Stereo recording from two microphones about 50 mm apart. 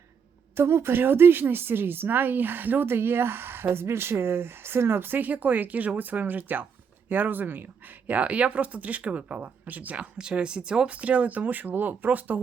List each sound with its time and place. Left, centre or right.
0.5 s a woman's voice: right